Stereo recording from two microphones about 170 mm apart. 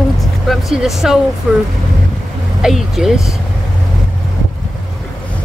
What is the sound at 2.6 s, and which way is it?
Speech, centre (ahead or behind).